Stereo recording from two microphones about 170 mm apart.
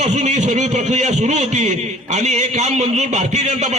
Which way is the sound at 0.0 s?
40° right (ahead or behind).